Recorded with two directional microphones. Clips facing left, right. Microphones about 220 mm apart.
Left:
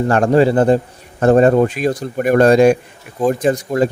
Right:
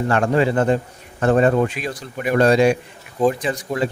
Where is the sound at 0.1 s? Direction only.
40° left (ahead or behind).